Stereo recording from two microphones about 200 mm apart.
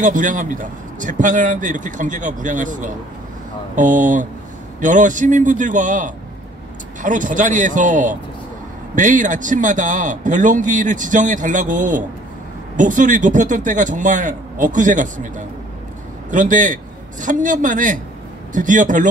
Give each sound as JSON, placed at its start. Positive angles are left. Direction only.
{"t": 0.0, "sound": "a man's voice", "side_deg": -40}